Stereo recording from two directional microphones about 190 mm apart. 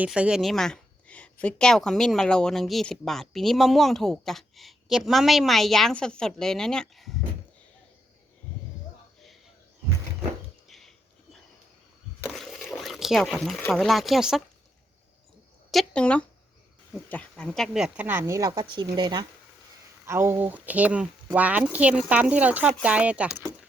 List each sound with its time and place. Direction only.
0.0 s a woman's voice: 5° right (ahead or behind)
10.7 s a sound: centre (ahead or behind)
15.7 s a woman's voice: 5° left (ahead or behind)